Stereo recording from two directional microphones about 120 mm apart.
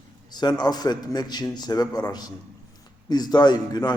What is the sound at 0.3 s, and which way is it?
A man's voice, 35° left (ahead or behind).